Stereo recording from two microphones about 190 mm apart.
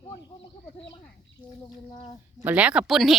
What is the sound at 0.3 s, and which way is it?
Speech, 30° left (ahead or behind).